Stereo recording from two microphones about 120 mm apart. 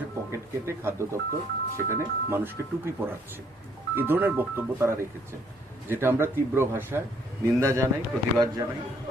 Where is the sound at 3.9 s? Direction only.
15° right (ahead or behind).